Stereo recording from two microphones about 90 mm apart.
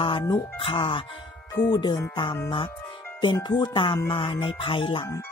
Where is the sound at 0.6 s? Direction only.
80° left.